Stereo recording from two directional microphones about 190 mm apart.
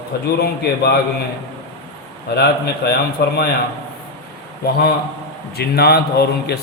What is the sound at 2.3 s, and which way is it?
A man's voice, 60° left (ahead or behind).